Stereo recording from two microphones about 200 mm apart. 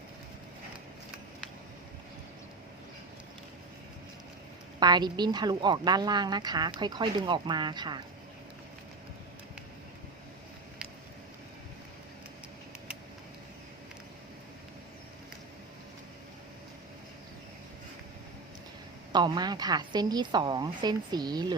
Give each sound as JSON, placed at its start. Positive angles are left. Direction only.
{"t": 4.8, "sound": "a woman's voice", "side_deg": -20}
{"t": 19.1, "sound": "a woman's voice", "side_deg": -20}